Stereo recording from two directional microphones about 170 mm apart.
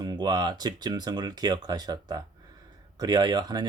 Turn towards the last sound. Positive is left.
turn(degrees=-25)  # may be behind; listen again after turning